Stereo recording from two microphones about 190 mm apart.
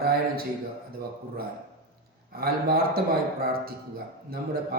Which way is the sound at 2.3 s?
55° right (ahead or behind).